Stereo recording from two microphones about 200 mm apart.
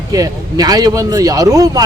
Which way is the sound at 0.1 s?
20° right (ahead or behind).